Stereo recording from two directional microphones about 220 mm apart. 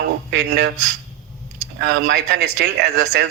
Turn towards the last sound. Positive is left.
turn(degrees=-50)  # may be behind; listen again after turning